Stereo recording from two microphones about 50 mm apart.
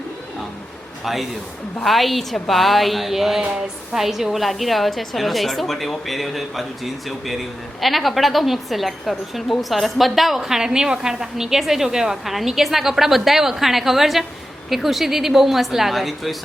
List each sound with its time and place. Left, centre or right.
1.0 s a woman's voice: centre